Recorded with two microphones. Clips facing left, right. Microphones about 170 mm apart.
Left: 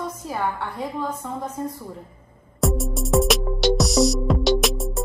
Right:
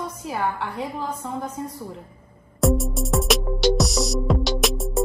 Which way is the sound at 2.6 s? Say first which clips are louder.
Right 2 dB; centre (ahead or behind).